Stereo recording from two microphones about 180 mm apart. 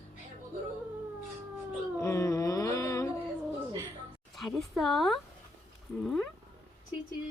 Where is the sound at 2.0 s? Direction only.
15° left (ahead or behind).